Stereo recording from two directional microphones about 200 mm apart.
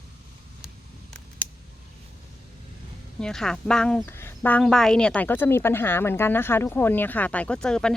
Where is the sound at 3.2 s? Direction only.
5° left (ahead or behind).